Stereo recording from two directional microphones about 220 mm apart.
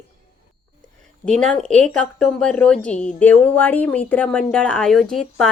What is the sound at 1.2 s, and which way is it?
Speech, centre (ahead or behind).